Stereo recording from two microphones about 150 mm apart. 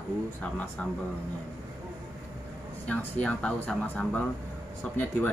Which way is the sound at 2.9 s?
10° left (ahead or behind).